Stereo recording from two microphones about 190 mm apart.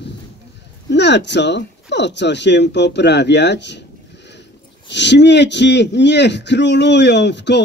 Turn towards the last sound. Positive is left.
turn(degrees=65)  # may be behind; listen again after turning